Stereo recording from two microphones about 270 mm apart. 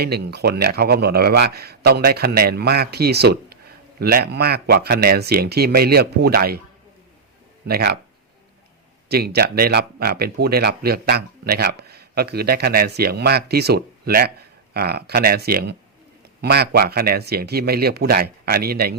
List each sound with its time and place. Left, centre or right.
0.0 s speech: right
7.7 s speech: right
9.0 s speech: right